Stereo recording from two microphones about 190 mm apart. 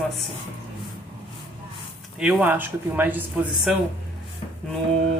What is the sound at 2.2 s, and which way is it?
Speech, 5° right (ahead or behind).